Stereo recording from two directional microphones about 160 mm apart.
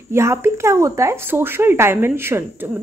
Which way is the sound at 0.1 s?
15° right (ahead or behind).